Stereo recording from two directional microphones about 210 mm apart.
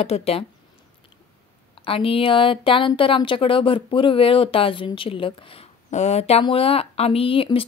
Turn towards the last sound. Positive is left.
turn(degrees=25)  # may be behind; listen again after turning